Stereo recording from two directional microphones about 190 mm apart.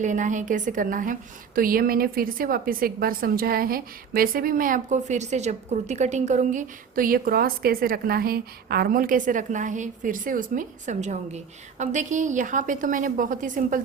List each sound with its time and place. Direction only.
0.0 s a woman's voice: 40° right (ahead or behind)